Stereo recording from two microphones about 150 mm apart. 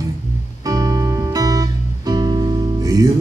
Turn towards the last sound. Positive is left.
turn(degrees=-25)  # may be behind; listen again after turning